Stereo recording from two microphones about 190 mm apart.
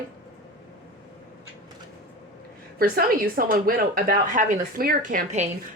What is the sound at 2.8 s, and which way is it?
A woman's voice, 50° right (ahead or behind).